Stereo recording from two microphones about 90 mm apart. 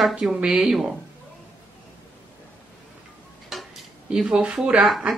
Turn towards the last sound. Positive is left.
turn(degrees=0)  # may be behind; listen again after turning